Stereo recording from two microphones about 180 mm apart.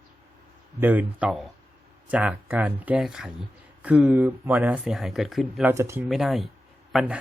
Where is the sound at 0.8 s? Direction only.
10° right (ahead or behind).